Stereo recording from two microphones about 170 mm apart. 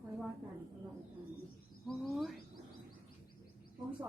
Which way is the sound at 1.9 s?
Centre (ahead or behind).